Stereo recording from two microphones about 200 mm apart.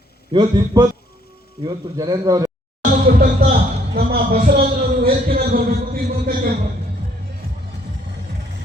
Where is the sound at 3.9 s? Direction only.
50° right (ahead or behind).